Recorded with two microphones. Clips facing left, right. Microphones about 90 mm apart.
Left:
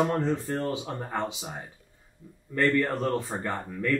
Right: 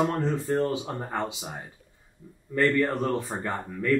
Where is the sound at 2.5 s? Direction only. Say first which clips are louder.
Right 1 dB; 5° right (ahead or behind).